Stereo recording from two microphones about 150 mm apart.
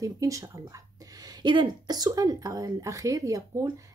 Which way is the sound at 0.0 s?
20° right (ahead or behind).